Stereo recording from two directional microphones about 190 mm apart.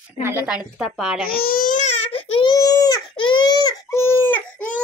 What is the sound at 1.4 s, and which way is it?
Baby cry, 50° left (ahead or behind).